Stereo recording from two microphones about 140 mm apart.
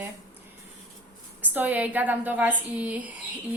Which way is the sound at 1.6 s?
10° right (ahead or behind).